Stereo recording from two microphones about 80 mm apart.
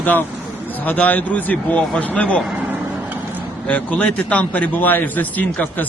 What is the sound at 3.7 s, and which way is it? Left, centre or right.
Speech, centre.